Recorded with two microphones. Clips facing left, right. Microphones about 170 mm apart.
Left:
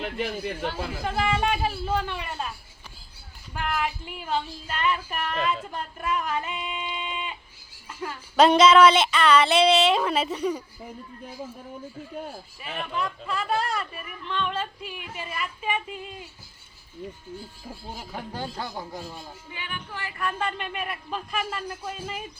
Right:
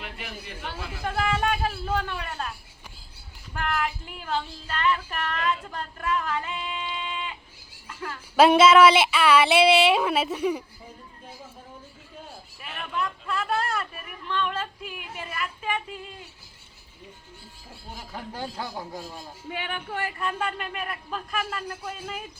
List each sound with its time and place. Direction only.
0.0 s speech: 35° left (ahead or behind)
1.0 s speech: centre (ahead or behind)
3.5 s speech: 5° left (ahead or behind)
7.9 s a sound: 15° left (ahead or behind)
8.4 s female singing: 5° right (ahead or behind)
12.9 s speech: centre (ahead or behind)
18.3 s speech: 5° right (ahead or behind)
19.5 s music: 70° right (ahead or behind)
20.4 s speech: centre (ahead or behind)